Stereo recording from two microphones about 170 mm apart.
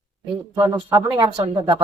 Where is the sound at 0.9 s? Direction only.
20° right (ahead or behind).